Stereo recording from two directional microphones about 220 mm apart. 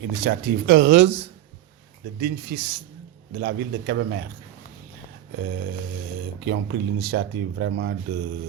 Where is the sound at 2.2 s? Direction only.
45° right (ahead or behind).